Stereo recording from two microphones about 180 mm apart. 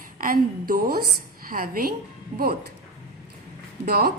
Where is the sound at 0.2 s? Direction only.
50° right (ahead or behind).